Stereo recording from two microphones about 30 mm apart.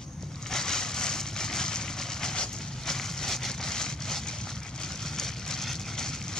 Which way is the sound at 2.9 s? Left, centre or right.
Centre.